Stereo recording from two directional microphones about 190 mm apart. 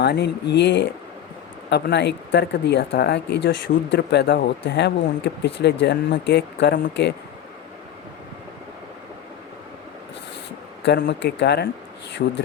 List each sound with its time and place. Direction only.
0.0 s speech: 60° left (ahead or behind)
10.8 s speech: 60° left (ahead or behind)
12.2 s speech: 50° left (ahead or behind)